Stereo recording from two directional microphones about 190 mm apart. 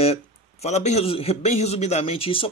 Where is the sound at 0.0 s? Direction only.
35° left (ahead or behind).